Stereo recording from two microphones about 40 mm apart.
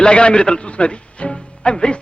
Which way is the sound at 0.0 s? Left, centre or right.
Left.